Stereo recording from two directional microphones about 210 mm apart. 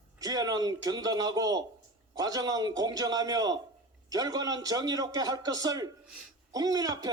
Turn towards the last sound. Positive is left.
turn(degrees=-20)  # may be behind; listen again after turning